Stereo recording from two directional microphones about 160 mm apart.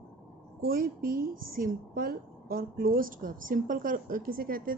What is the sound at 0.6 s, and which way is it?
Speech, 65° right (ahead or behind).